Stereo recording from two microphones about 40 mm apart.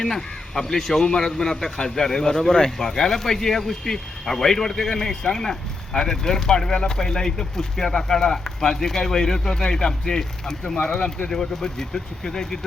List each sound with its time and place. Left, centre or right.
0.0 s a man's voice: centre
11.3 s a man's voice: centre